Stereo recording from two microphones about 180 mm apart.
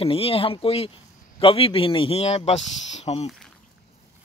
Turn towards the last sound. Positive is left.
turn(degrees=35)  # may be behind; listen again after turning